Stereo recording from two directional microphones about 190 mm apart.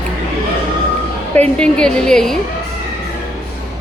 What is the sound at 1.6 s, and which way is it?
Speech, 5° left (ahead or behind).